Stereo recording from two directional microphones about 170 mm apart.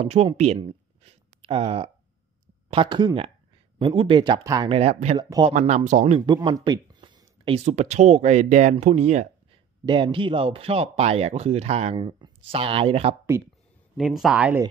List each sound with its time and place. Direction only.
0.0 s speech: 40° right (ahead or behind)
0.6 s a sound: 30° right (ahead or behind)
2.7 s speech: 30° right (ahead or behind)
4.6 s speech: 35° right (ahead or behind)
5.2 s speech: 25° right (ahead or behind)
5.5 s speech: 50° right (ahead or behind)
6.2 s speech: 25° right (ahead or behind); by 9.6 s 40° right (ahead or behind)
9.8 s speech: 30° right (ahead or behind)
13.3 s speech: 15° right (ahead or behind)
13.9 s speech: centre (ahead or behind)